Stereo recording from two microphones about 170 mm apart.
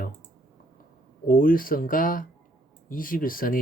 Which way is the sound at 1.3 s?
55° left (ahead or behind).